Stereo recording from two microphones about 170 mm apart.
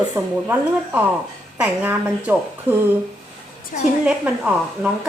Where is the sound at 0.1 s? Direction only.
10° right (ahead or behind).